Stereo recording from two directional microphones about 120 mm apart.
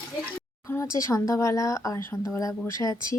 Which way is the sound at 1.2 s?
25° left (ahead or behind).